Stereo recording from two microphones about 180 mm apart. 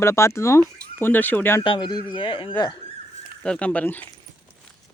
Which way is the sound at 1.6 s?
25° left (ahead or behind).